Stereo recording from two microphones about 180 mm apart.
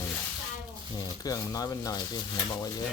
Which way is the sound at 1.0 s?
20° left (ahead or behind).